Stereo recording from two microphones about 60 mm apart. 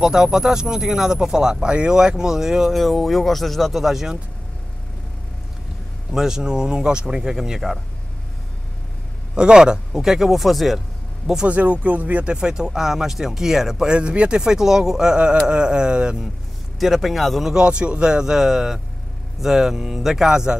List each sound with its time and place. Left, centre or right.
0.0 s speech: centre
6.1 s speech: centre
9.3 s speech: centre
11.4 s speech: right
12.4 s speech: centre
13.9 s speech: centre
16.8 s speech: centre
17.6 s speech: centre